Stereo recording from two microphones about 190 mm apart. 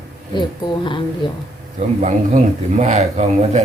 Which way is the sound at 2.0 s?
35° right (ahead or behind).